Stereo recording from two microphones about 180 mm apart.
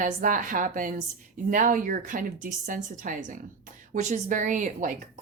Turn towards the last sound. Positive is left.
turn(degrees=-45)  # may be behind; listen again after turning